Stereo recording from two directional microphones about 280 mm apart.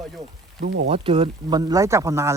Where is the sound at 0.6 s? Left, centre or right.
Right.